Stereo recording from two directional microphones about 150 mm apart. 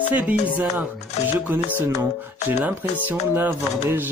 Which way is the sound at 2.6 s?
10° right (ahead or behind).